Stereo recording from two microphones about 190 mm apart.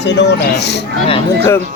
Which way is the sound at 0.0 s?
65° left (ahead or behind).